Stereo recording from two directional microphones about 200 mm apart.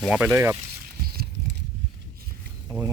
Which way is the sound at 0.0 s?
5° right (ahead or behind).